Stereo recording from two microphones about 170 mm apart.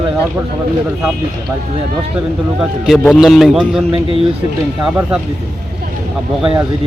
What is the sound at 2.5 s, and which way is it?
A man's voice, 5° right (ahead or behind).